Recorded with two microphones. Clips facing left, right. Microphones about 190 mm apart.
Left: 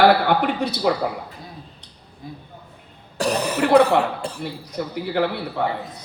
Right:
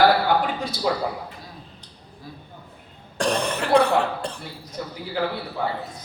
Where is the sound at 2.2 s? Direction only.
20° left (ahead or behind).